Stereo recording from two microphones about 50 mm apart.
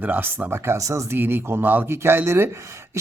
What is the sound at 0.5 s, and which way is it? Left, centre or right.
Speech, right.